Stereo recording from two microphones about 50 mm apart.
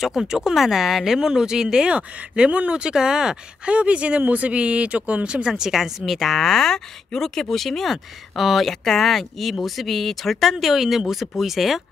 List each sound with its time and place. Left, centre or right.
0.0 s speech: centre
2.0 s speech: right; by 11.8 s centre